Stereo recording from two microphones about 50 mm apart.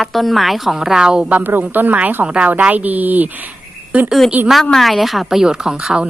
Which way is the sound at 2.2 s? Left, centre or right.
Right.